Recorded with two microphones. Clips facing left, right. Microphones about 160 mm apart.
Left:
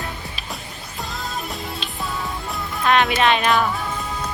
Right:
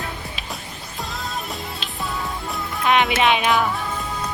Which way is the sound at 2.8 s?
15° right (ahead or behind).